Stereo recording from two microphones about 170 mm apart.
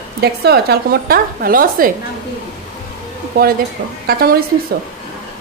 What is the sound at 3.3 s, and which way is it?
A woman's voice, 65° right (ahead or behind).